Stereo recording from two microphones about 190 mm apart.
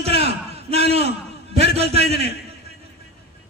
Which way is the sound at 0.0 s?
30° right (ahead or behind).